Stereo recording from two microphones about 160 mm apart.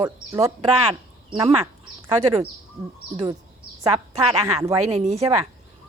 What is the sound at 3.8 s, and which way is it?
Speech, 20° right (ahead or behind).